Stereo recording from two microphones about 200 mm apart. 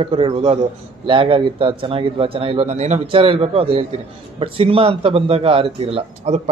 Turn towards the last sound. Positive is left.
turn(degrees=-30)  # may be behind; listen again after turning